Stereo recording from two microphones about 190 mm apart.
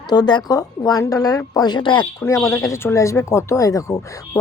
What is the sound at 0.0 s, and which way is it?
Speech, 20° left (ahead or behind).